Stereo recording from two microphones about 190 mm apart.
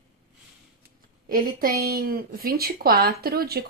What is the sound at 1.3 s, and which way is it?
A woman's voice, 50° right (ahead or behind).